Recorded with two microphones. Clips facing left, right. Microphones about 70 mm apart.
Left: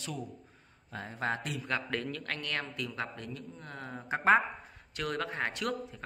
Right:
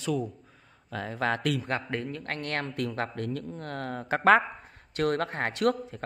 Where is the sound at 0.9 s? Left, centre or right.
Right.